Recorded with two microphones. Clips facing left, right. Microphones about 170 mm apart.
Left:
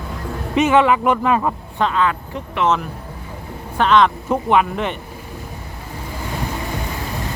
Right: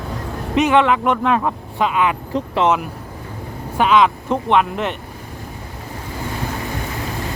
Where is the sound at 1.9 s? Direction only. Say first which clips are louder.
Right 1 dB; 15° right (ahead or behind).